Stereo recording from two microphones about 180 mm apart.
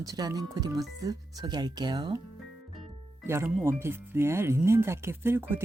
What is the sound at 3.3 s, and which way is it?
Speech, 15° right (ahead or behind).